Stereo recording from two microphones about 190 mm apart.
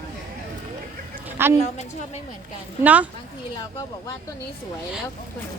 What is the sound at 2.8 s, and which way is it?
Speech, 10° right (ahead or behind).